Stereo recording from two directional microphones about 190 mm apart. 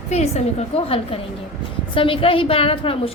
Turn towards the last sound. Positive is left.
turn(degrees=30)  # may be behind; listen again after turning